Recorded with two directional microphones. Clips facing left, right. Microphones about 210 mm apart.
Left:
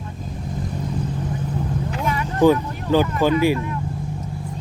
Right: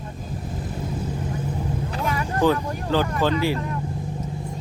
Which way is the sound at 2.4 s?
15° left (ahead or behind).